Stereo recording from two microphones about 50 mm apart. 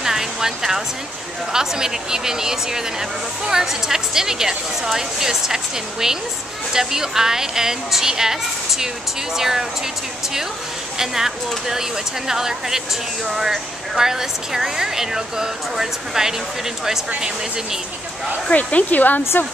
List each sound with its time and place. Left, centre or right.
0.0 s a sound: centre
1.5 s speech: centre
11.0 s speech: centre
18.5 s speech: left